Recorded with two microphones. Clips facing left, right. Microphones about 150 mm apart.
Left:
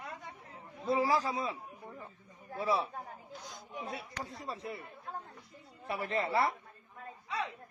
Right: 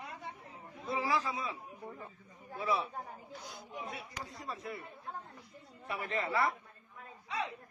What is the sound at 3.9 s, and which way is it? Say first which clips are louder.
Speech: left 3 dB; 30° left (ahead or behind).